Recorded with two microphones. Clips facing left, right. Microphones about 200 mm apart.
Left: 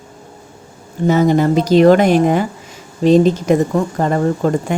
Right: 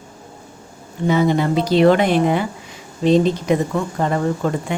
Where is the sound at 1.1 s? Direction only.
45° left (ahead or behind).